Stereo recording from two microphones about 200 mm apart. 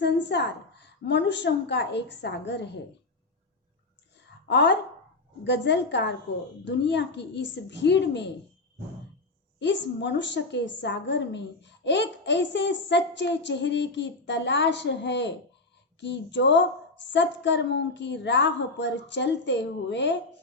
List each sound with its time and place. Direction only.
0.0 s a woman's voice: 60° left (ahead or behind)
4.4 s a woman's voice: 60° left (ahead or behind)
9.6 s a woman's voice: 60° left (ahead or behind)